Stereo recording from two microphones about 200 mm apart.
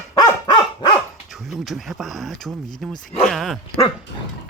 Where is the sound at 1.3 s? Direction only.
Centre (ahead or behind).